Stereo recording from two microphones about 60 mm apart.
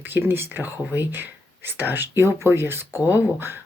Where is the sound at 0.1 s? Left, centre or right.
Right.